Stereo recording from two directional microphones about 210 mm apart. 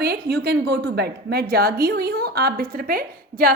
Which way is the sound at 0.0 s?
50° right (ahead or behind).